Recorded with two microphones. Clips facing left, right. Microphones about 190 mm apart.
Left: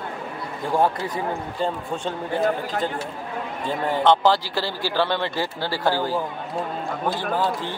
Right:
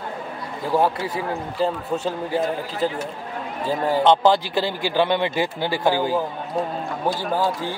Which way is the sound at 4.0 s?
15° right (ahead or behind).